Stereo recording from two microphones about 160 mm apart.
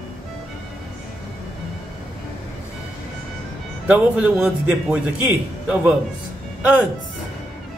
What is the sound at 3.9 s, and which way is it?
A man's voice, 10° right (ahead or behind).